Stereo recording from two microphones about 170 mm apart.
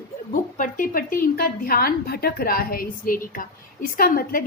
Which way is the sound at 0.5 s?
50° left (ahead or behind).